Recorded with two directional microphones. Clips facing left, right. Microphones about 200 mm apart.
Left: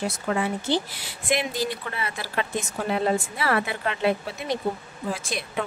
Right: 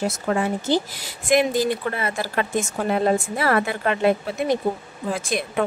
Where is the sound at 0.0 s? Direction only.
45° right (ahead or behind).